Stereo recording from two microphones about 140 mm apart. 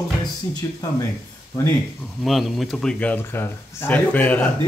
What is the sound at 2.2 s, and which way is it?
Speech, centre (ahead or behind).